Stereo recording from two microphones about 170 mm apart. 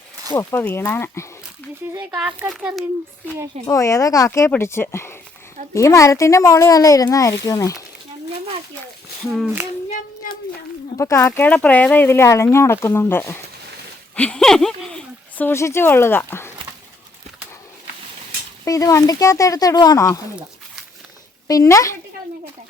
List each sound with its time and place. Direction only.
0.3 s speech: 10° left (ahead or behind)
1.9 s speech: 10° right (ahead or behind)
3.7 s a child's voice: 20° left (ahead or behind)
10.9 s speech: 15° left (ahead or behind)
18.6 s a child's voice: 20° left (ahead or behind)
21.4 s a child's voice: 20° left (ahead or behind)